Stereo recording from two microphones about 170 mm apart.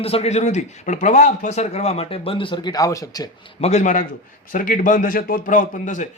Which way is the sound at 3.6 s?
40° left (ahead or behind).